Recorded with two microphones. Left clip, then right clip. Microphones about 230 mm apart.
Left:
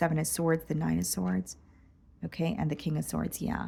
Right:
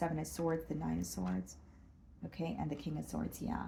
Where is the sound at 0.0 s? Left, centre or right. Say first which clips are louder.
Left 8 dB; left.